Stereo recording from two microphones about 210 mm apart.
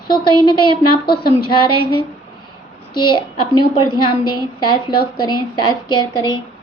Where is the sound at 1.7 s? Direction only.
90° left.